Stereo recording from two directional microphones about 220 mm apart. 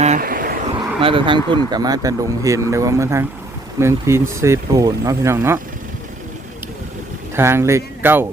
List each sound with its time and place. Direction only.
0.0 s vehicle: 35° right (ahead or behind)
1.0 s speech: 25° right (ahead or behind)
7.3 s speech: 10° right (ahead or behind)